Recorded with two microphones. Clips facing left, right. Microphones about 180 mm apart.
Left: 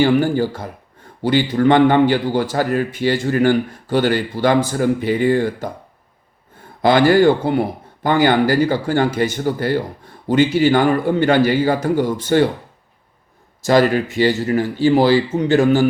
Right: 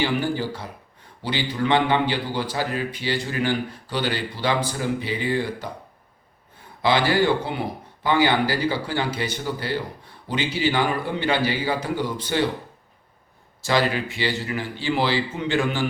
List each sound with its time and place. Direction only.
0.0 s a man's voice: 45° left (ahead or behind)
6.8 s a man's voice: 50° left (ahead or behind)
13.6 s a man's voice: 45° left (ahead or behind)